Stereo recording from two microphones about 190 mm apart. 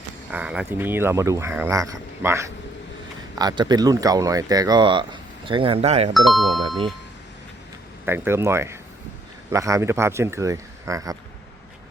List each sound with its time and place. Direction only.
0.3 s speech: 5° right (ahead or behind); by 6.1 s 35° right (ahead or behind)
6.1 s speech: centre (ahead or behind)
8.0 s speech: 10° right (ahead or behind)